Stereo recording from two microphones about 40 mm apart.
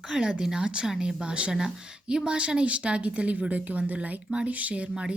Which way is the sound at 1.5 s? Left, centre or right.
Centre.